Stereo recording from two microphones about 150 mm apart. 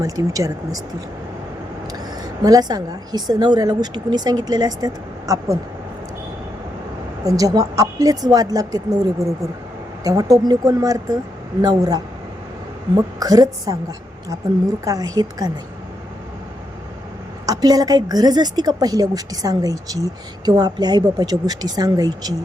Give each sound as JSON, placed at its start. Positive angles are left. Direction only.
{"t": 0.0, "sound": "a woman's voice", "side_deg": -20}
{"t": 1.9, "sound": "a woman's voice", "side_deg": -25}
{"t": 7.3, "sound": "a woman's voice", "side_deg": -25}
{"t": 14.8, "sound": "a woman's voice", "side_deg": -25}
{"t": 17.4, "sound": "a woman's voice", "side_deg": -25}